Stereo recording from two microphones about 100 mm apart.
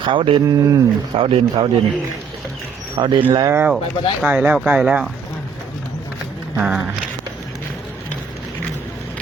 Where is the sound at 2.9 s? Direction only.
55° right (ahead or behind).